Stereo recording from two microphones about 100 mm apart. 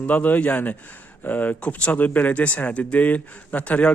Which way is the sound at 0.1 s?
15° left (ahead or behind).